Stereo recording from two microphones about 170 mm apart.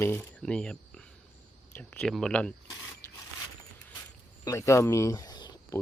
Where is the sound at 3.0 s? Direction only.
15° left (ahead or behind).